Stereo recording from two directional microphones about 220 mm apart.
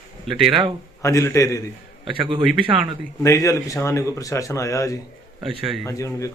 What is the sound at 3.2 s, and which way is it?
Speech, 15° left (ahead or behind).